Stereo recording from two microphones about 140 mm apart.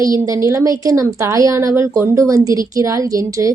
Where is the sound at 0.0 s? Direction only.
25° right (ahead or behind).